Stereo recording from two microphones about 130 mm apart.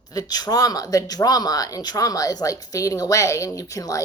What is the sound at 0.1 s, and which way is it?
Speech, 30° left (ahead or behind).